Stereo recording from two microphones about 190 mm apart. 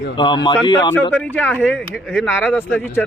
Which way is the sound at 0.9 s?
10° left (ahead or behind).